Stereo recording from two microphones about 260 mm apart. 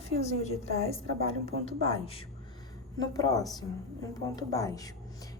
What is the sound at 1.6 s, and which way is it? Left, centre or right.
A woman's voice, left.